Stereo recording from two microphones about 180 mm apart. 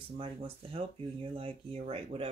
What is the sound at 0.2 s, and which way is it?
Speech, 30° right (ahead or behind).